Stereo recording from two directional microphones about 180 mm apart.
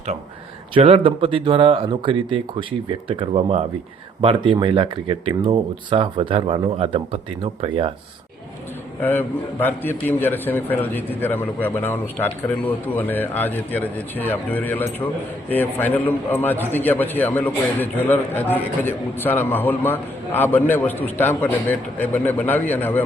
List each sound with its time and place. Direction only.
0.7 s speech: 35° right (ahead or behind)
9.0 s a man's voice: 10° left (ahead or behind)